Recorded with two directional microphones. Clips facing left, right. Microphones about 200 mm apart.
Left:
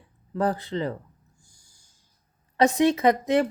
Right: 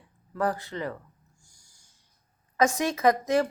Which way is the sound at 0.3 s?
25° left (ahead or behind).